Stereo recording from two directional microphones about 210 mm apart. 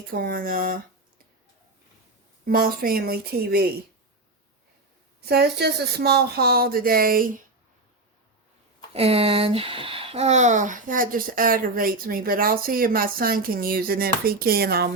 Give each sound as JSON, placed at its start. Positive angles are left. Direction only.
{"t": 0.1, "sound": "speech", "side_deg": -45}
{"t": 2.4, "sound": "speech", "side_deg": -45}
{"t": 5.2, "sound": "speech", "side_deg": -50}
{"t": 8.9, "sound": "speech", "side_deg": -30}